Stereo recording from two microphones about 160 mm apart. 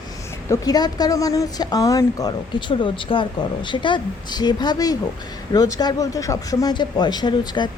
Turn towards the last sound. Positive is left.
turn(degrees=25)  # may be behind; listen again after turning